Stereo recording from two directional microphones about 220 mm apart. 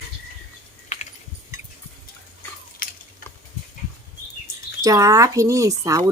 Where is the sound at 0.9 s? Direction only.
30° left (ahead or behind).